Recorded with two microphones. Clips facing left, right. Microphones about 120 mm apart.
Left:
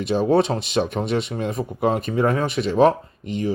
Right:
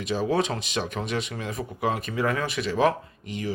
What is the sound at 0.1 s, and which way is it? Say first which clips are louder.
Speech: left 6 dB; 30° left (ahead or behind).